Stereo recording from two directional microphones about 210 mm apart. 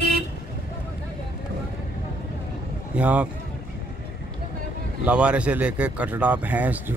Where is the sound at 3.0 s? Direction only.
5° right (ahead or behind).